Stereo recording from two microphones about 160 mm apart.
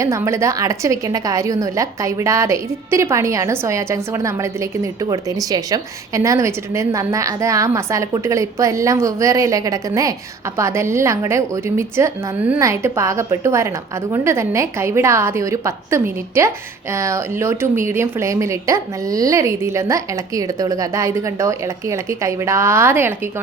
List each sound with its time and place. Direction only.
0.0 s a woman's voice: 20° right (ahead or behind)